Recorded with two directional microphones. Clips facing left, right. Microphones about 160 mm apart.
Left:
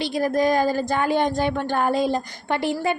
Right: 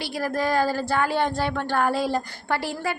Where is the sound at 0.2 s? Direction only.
20° left (ahead or behind).